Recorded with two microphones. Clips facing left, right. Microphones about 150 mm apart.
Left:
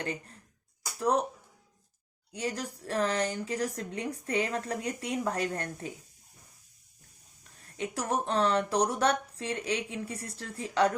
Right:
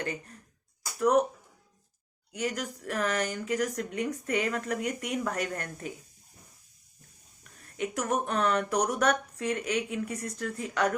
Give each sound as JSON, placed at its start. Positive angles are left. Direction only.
{"t": 0.9, "sound": "speech", "side_deg": 30}
{"t": 2.3, "sound": "speech", "side_deg": 30}
{"t": 7.8, "sound": "speech", "side_deg": 30}